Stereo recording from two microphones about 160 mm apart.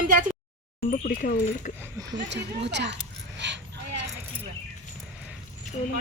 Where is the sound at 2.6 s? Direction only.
90° right.